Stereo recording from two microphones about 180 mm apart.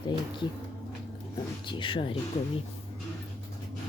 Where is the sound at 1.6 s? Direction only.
30° left (ahead or behind).